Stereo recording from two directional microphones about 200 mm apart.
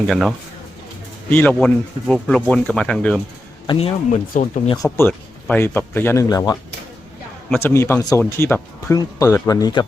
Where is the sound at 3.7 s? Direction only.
30° left (ahead or behind).